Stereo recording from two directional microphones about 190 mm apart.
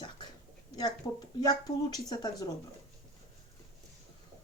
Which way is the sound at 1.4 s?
20° left (ahead or behind).